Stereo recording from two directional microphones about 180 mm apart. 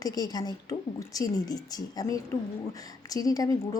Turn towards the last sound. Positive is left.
turn(degrees=20)  # may be behind; listen again after turning